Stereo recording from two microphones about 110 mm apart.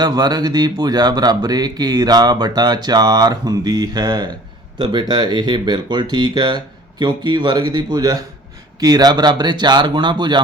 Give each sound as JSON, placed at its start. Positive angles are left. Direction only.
{"t": 0.0, "sound": "speech", "side_deg": -40}